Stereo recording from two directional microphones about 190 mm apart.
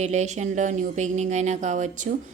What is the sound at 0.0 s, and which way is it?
A woman's voice, 40° right (ahead or behind).